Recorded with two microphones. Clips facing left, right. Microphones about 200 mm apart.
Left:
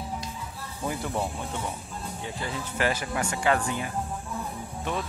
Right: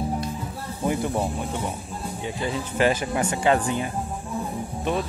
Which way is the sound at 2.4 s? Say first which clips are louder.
Right 6 dB; 20° right (ahead or behind).